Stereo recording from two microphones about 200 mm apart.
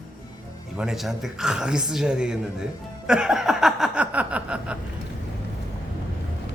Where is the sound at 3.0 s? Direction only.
5° right (ahead or behind).